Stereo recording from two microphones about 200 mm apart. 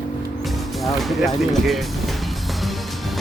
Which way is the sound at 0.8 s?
Centre (ahead or behind).